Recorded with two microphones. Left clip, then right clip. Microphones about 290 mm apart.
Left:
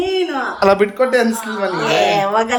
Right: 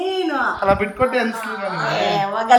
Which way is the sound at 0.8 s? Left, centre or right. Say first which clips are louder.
Left 5 dB; left.